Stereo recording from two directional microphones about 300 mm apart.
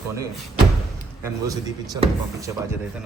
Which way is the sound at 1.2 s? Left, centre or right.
Centre.